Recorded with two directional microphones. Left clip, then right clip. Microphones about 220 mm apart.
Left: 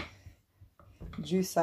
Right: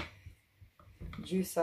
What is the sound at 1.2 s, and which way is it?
Speech, 35° left (ahead or behind).